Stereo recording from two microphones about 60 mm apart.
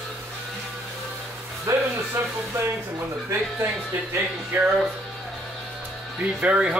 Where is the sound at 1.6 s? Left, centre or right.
Right.